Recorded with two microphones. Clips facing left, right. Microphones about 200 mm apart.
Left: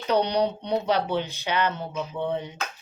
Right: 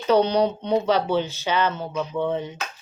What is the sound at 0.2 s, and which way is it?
Speech, 15° left (ahead or behind).